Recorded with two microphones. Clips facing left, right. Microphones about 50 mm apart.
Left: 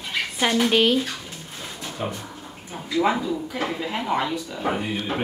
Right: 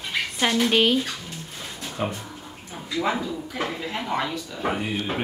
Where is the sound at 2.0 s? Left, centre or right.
Right.